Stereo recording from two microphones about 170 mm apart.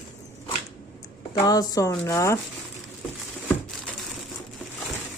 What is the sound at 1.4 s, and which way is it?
Speech, 20° left (ahead or behind).